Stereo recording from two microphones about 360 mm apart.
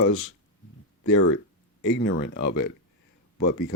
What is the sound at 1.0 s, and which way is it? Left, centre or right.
Speech, left.